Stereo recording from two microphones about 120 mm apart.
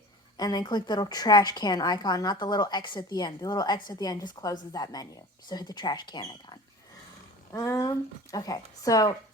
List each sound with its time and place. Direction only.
0.3 s a woman's voice: 35° left (ahead or behind)
7.5 s speech: 25° left (ahead or behind)